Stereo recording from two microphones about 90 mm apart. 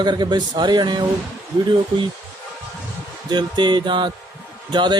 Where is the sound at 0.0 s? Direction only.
55° right (ahead or behind).